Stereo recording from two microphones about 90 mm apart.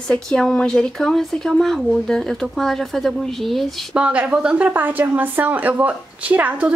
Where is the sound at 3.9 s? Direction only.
10° right (ahead or behind).